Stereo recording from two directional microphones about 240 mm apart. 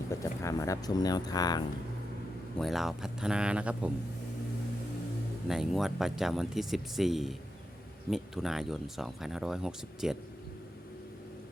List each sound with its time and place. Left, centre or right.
0.1 s speech: centre
2.6 s speech: centre
5.5 s speech: centre